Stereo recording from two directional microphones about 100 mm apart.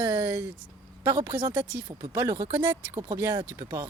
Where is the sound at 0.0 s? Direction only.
20° right (ahead or behind).